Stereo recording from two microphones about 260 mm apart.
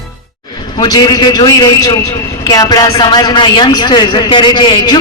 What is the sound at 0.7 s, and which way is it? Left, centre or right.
A man's voice, centre.